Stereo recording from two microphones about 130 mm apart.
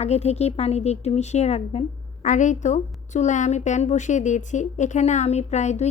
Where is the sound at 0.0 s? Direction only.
55° left (ahead or behind).